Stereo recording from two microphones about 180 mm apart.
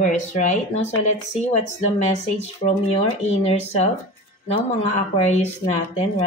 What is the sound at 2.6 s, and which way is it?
Speech, 35° left (ahead or behind).